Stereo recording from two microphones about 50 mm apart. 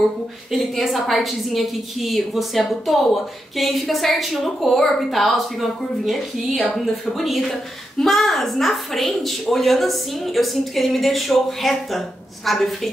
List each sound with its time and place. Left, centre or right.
0.5 s a woman's voice: centre